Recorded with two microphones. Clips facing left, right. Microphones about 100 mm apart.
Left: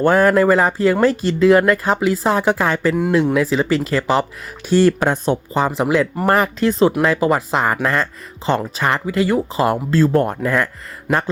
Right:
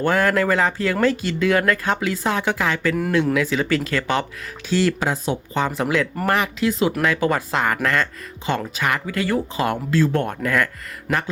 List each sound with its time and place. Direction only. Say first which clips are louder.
0.0 s speech: left 6 dB; 35° left (ahead or behind)
4.9 s speech: left 5 dB; 50° left (ahead or behind)
5.5 s speech: left 4 dB; 30° left (ahead or behind)
7.0 s speech: left 4 dB; 30° left (ahead or behind)
9.9 s speech: left 3 dB; 40° left (ahead or behind)